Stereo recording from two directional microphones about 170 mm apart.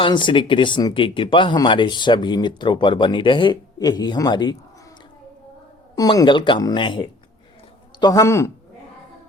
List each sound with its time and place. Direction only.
0.0 s speech: 30° left (ahead or behind)
6.0 s speech: 25° left (ahead or behind)